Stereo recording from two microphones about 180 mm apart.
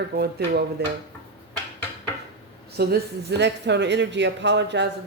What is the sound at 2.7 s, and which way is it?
Speech, 65° right (ahead or behind).